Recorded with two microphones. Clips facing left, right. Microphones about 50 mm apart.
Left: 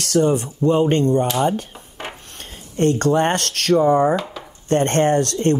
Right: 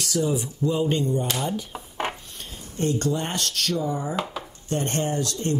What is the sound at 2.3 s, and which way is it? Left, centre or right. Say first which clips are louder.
Speech: left 2 dB; left.